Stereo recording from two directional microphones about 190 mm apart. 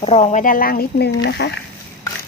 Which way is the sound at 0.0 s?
30° left (ahead or behind).